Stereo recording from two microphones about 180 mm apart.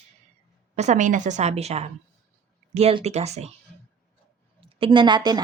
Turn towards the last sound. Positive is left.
turn(degrees=-25)  # may be behind; listen again after turning